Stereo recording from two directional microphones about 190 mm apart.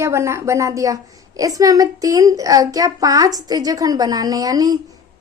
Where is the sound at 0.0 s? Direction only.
15° right (ahead or behind).